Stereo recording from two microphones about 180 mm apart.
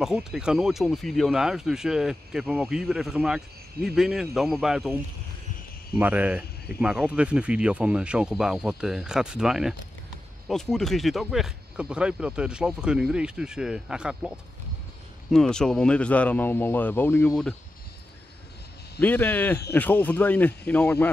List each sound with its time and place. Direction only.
0.0 s speech: 5° right (ahead or behind)
5.9 s speech: 10° right (ahead or behind); by 17.4 s 10° left (ahead or behind)
18.9 s speech: 10° left (ahead or behind)